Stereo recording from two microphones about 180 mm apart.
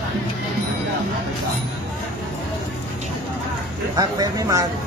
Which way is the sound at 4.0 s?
20° right (ahead or behind).